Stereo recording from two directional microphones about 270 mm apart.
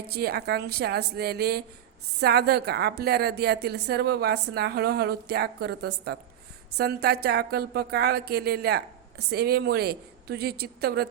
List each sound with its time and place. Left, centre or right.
0.1 s speech: right